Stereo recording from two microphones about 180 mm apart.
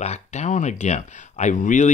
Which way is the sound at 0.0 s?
40° left (ahead or behind).